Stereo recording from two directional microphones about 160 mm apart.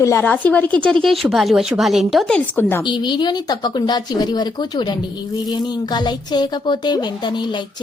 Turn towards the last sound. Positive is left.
turn(degrees=25)  # may be behind; listen again after turning